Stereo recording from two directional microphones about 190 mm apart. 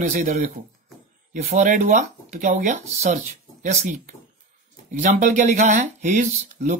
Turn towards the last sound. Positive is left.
turn(degrees=-40)  # may be behind; listen again after turning